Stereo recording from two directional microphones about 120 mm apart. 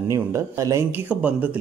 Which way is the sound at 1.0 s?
15° right (ahead or behind).